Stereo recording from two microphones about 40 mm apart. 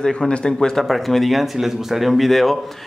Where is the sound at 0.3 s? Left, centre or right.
Left.